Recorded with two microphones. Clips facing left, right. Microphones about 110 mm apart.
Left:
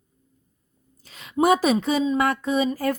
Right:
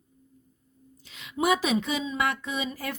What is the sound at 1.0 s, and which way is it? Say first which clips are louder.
A woman's voice: left 6 dB; 40° left (ahead or behind).